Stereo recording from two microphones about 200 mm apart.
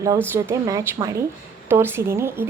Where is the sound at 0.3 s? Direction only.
15° right (ahead or behind).